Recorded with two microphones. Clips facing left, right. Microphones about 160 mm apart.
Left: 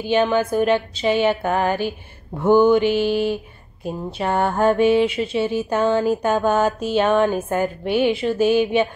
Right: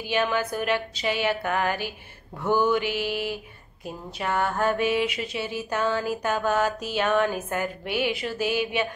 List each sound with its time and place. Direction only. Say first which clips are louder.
0.0 s mantra: left 7 dB; 25° left (ahead or behind)